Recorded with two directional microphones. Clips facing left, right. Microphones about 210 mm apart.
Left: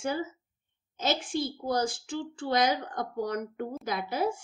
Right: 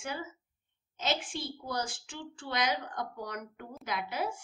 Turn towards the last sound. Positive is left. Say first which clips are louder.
# left 5 dB
turn(degrees=40)  # may be behind; listen again after turning